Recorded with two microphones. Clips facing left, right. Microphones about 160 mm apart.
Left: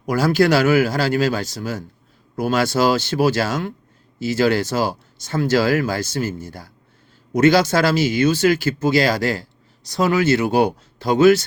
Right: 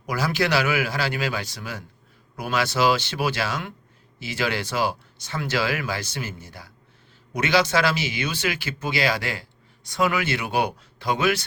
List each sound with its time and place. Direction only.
0.0 s speech: 45° left (ahead or behind)